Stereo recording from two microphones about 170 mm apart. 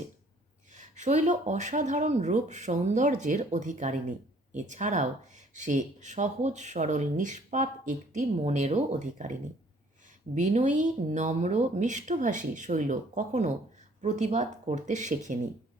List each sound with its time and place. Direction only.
0.7 s speech: 45° right (ahead or behind)